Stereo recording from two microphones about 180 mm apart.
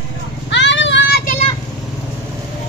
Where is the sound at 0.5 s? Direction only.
80° left.